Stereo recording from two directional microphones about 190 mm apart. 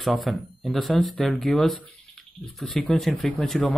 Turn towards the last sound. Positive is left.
turn(degrees=0)  # may be behind; listen again after turning